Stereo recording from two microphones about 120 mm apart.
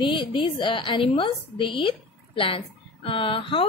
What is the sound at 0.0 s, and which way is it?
A woman's voice, 45° left (ahead or behind).